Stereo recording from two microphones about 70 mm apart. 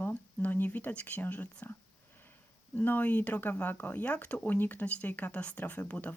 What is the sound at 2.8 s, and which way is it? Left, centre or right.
Speech, left.